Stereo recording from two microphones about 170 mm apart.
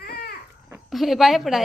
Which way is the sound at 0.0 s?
65° left (ahead or behind).